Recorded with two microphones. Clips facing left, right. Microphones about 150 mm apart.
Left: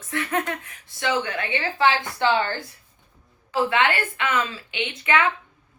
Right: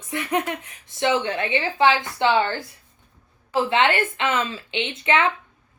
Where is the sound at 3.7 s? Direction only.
25° right (ahead or behind).